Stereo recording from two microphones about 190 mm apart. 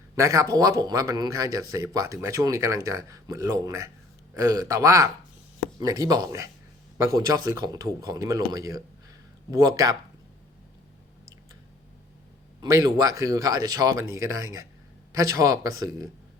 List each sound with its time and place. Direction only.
0.2 s speech: 15° right (ahead or behind)
12.5 s speech: 20° right (ahead or behind)